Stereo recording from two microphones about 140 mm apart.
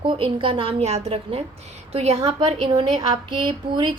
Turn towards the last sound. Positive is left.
turn(degrees=-35)  # may be behind; listen again after turning